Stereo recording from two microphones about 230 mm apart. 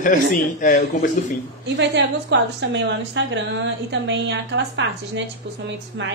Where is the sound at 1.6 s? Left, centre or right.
Right.